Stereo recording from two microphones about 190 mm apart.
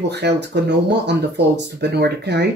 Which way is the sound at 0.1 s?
65° right (ahead or behind).